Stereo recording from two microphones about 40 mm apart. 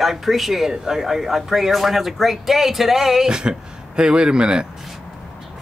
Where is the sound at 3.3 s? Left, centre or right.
Centre.